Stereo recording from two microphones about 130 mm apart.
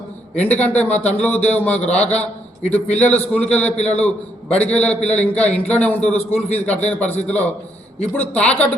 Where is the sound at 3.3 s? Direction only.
10° left (ahead or behind).